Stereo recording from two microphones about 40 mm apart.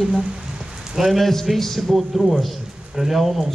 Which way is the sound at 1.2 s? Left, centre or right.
Centre.